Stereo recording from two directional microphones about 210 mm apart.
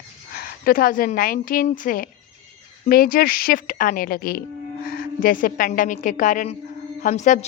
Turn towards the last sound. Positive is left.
turn(degrees=35)  # may be behind; listen again after turning